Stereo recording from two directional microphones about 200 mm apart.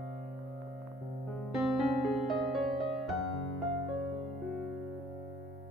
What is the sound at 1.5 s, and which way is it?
Music, centre (ahead or behind).